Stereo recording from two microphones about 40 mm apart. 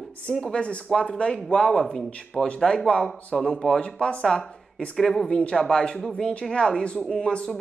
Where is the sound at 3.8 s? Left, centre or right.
Left.